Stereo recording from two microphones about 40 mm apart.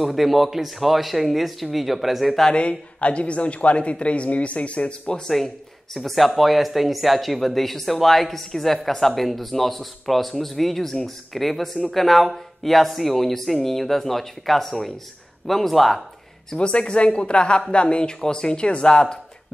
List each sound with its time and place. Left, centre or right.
0.0 s speech: centre
2.5 s speech: left
5.9 s speech: centre
16.5 s speech: left